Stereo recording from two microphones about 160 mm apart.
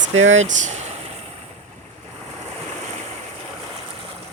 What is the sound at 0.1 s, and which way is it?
Speech, 50° right (ahead or behind).